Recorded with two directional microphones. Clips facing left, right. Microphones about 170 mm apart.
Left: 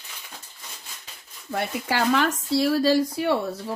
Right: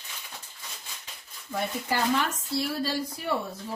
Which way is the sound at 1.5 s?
85° left.